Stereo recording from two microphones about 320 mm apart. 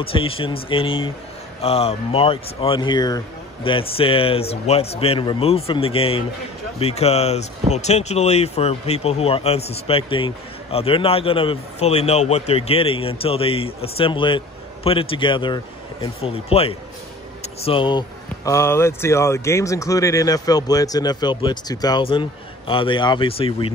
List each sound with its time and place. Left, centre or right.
0.0 s speech: centre